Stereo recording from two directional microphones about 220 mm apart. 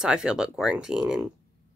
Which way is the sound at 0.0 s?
5° right (ahead or behind).